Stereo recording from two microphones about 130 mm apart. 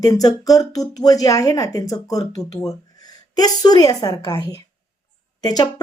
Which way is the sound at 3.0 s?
30° left (ahead or behind).